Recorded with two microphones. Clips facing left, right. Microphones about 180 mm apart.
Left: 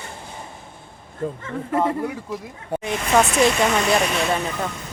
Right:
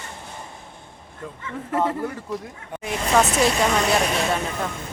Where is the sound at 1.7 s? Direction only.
5° left (ahead or behind).